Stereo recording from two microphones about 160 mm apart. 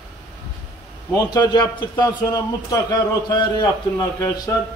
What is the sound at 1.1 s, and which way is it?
A man's voice, 25° left (ahead or behind).